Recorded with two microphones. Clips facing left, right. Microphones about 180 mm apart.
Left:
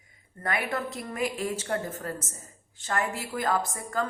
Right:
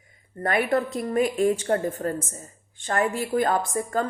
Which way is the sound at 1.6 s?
40° right (ahead or behind).